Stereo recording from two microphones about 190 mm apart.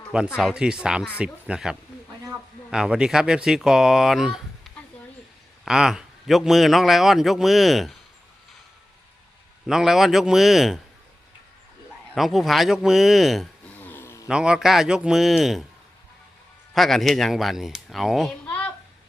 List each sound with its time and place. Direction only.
0.3 s a man's voice: 5° right (ahead or behind)
9.6 s a man's voice: centre (ahead or behind)
12.1 s speech: centre (ahead or behind)
14.3 s a man's voice: 5° right (ahead or behind)
16.7 s a child's voice: centre (ahead or behind)